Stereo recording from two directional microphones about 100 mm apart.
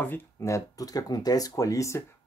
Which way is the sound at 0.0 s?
25° left (ahead or behind).